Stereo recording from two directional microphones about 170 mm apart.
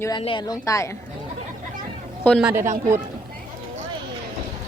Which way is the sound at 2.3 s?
Centre (ahead or behind).